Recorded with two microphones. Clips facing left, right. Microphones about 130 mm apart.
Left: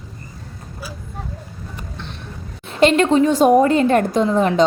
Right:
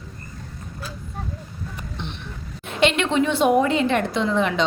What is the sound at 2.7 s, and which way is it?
A woman's voice, 40° left (ahead or behind).